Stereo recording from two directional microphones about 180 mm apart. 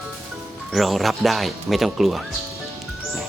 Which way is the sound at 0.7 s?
Centre (ahead or behind).